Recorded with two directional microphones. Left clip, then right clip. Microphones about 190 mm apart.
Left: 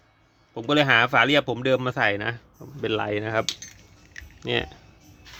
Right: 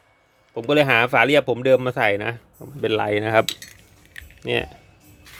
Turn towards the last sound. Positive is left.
turn(degrees=-10)  # may be behind; listen again after turning